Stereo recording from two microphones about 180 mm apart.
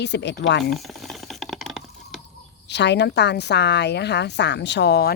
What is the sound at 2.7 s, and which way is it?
Speech, 75° left (ahead or behind).